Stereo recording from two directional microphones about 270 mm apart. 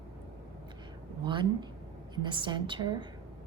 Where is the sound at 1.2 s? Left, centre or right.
Centre.